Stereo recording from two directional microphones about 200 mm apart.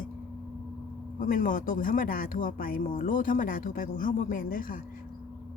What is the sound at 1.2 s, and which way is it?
Speech, 40° left (ahead or behind).